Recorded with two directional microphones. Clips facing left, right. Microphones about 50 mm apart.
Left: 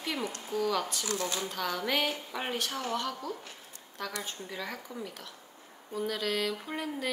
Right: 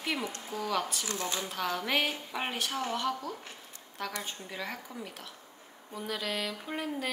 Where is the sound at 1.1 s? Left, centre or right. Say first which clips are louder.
Left 1 dB; right.